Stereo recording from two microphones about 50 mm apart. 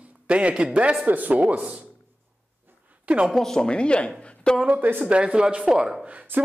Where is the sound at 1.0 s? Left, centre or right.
Right.